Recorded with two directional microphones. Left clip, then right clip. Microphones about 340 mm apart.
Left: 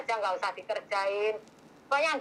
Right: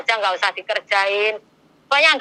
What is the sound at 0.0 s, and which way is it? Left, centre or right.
A man's voice, right.